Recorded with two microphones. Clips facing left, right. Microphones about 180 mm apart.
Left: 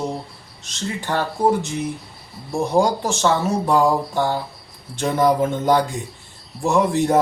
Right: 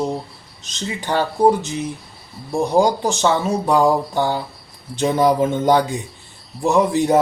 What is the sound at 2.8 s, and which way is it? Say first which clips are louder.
Speech: right 2 dB; 15° right (ahead or behind).